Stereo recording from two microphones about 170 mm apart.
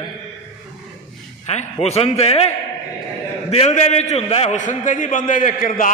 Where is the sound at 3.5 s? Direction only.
40° left (ahead or behind).